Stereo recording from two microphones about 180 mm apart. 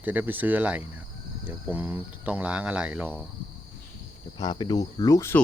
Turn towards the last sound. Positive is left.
turn(degrees=15)  # may be behind; listen again after turning